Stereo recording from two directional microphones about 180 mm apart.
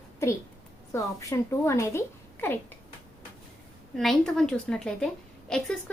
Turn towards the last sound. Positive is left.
turn(degrees=5)  # may be behind; listen again after turning